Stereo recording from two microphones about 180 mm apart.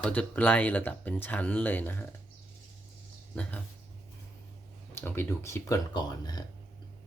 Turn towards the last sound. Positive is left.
turn(degrees=25)  # may be behind; listen again after turning